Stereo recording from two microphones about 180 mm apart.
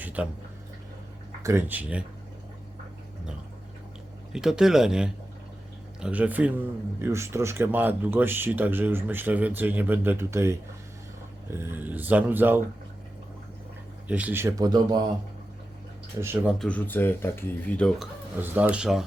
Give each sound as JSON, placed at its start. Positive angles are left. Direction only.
{"t": 0.0, "sound": "speech", "side_deg": -10}
{"t": 1.4, "sound": "speech", "side_deg": -15}
{"t": 4.3, "sound": "speech", "side_deg": -5}
{"t": 14.1, "sound": "speech", "side_deg": -10}
{"t": 16.2, "sound": "speech", "side_deg": -10}
{"t": 16.6, "sound": "speech", "side_deg": 5}
{"t": 18.5, "sound": "speech", "side_deg": -10}